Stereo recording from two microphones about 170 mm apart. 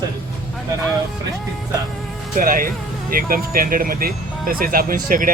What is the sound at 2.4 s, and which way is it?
Speech, 55° right (ahead or behind).